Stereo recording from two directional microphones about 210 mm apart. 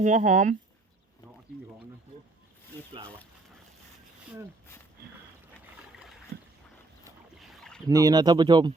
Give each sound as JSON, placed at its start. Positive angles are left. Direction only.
{"t": 0.0, "sound": "speech", "side_deg": -35}
{"t": 7.3, "sound": "boat", "side_deg": 0}
{"t": 7.9, "sound": "speech", "side_deg": -15}